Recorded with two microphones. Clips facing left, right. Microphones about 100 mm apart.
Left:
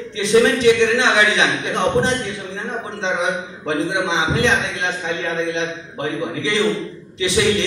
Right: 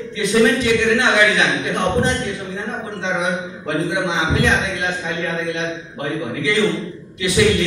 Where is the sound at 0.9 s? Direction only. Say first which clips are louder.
Right 1 dB; 20° left (ahead or behind).